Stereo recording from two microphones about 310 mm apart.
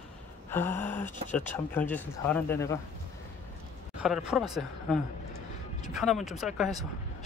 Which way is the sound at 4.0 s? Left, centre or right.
Centre.